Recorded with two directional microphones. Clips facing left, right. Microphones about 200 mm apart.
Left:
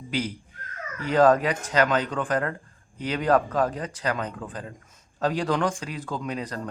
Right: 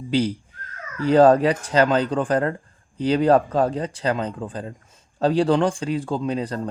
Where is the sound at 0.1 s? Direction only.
30° right (ahead or behind).